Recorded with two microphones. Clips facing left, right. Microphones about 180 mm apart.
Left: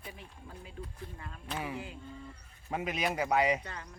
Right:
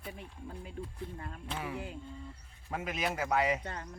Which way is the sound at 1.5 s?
5° left (ahead or behind).